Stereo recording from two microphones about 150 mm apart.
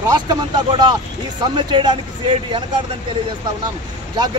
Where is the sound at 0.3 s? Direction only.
30° right (ahead or behind).